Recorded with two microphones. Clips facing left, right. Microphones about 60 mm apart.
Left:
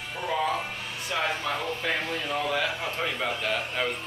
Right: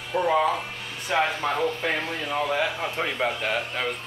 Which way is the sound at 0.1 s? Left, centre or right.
Right.